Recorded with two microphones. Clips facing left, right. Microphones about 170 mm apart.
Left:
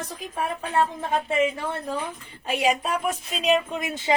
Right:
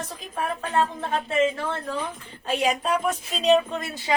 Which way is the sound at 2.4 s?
10° left (ahead or behind).